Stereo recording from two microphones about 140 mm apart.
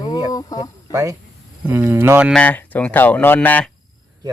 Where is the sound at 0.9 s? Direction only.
25° right (ahead or behind).